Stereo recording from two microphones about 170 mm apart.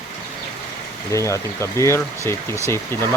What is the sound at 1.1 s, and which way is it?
Speech, 15° left (ahead or behind).